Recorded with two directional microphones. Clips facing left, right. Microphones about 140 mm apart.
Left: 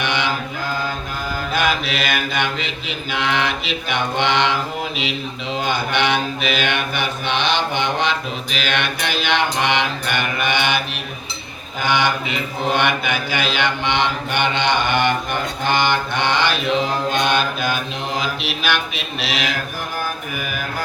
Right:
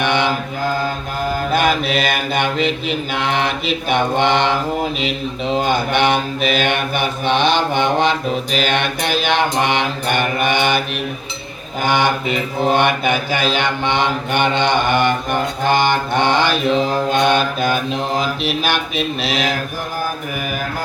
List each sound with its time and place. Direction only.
0.0 s mantra: 50° right (ahead or behind)
1.5 s mantra: 50° right (ahead or behind)
11.8 s mantra: 50° right (ahead or behind)